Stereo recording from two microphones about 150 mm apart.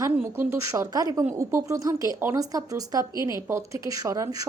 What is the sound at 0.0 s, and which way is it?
A woman's voice, 15° right (ahead or behind).